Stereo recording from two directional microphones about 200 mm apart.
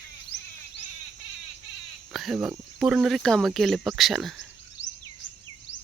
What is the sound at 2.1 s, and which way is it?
Speech, centre (ahead or behind).